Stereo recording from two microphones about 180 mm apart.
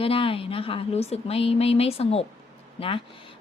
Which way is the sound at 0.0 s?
30° left (ahead or behind).